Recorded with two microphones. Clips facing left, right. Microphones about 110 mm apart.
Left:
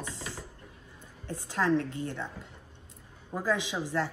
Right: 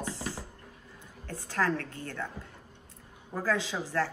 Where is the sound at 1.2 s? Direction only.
20° left (ahead or behind).